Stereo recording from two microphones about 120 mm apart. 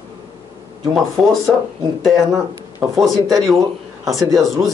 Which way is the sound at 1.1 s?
Centre (ahead or behind).